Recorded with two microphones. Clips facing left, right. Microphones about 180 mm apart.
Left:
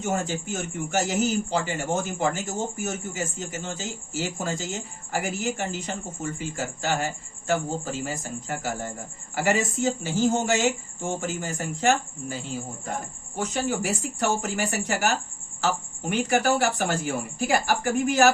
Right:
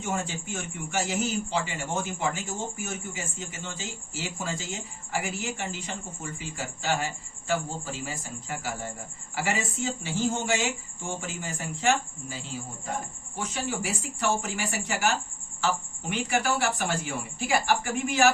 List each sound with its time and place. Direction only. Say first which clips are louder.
0.0 s a man's voice: left 4 dB; 40° left (ahead or behind)
13.4 s speech: left 5 dB; 40° left (ahead or behind)